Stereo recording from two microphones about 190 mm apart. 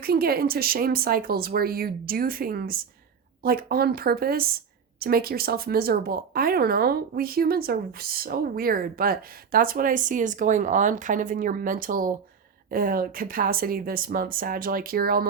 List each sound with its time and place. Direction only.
0.0 s a woman's voice: 50° right (ahead or behind)